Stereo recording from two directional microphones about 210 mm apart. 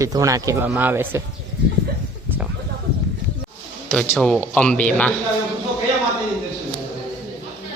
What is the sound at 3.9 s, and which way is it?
Speech, 5° left (ahead or behind).